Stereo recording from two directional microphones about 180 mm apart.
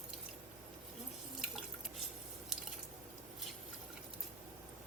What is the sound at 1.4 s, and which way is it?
Drip, centre (ahead or behind).